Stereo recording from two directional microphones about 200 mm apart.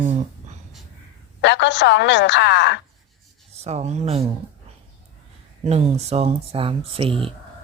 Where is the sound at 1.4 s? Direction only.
60° left (ahead or behind).